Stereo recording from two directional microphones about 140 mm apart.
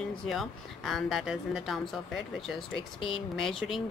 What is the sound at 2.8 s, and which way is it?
Speech, 40° left (ahead or behind).